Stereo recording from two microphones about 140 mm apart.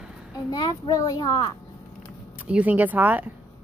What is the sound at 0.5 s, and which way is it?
A child's voice, 30° left (ahead or behind).